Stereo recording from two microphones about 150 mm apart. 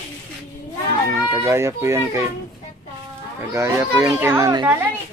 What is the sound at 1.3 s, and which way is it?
Speech, 20° right (ahead or behind).